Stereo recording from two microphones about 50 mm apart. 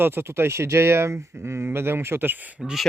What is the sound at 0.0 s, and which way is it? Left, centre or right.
Speech, right.